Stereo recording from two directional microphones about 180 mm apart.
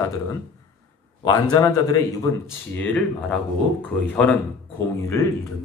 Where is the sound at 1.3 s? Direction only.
20° left (ahead or behind).